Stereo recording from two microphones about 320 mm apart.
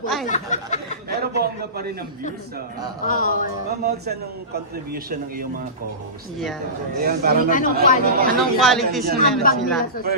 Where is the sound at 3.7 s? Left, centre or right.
Right.